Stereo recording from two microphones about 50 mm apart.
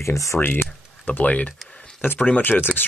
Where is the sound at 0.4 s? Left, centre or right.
Left.